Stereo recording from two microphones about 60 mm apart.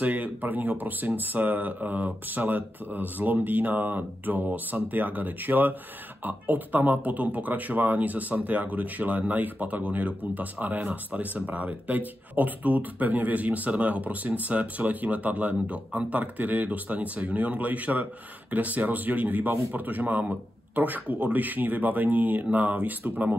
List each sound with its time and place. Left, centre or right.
0.0 s speech: right